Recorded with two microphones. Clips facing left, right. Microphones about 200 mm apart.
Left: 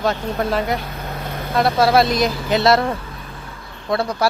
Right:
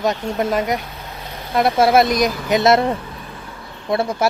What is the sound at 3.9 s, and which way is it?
Speech, 25° right (ahead or behind).